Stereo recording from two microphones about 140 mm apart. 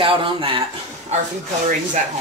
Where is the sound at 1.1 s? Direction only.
50° right (ahead or behind).